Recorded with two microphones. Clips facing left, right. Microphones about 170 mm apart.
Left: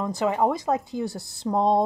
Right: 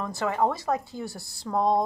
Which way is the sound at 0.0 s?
20° left (ahead or behind).